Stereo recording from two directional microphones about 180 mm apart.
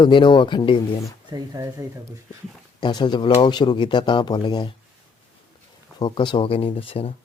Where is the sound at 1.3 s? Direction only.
20° right (ahead or behind).